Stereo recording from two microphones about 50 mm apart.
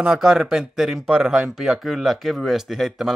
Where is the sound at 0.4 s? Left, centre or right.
Centre.